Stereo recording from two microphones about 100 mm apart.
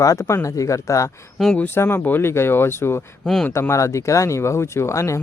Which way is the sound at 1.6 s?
25° left (ahead or behind).